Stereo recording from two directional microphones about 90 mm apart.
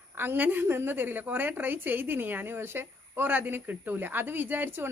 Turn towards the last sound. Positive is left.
turn(degrees=-25)  # may be behind; listen again after turning